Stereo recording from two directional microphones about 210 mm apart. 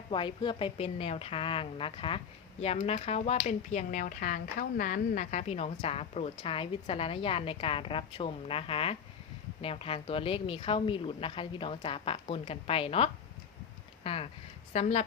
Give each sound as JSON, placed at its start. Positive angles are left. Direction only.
{"t": 0.1, "sound": "a woman's voice", "side_deg": 25}